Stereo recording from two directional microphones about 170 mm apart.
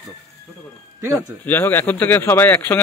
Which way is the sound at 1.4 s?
10° left (ahead or behind).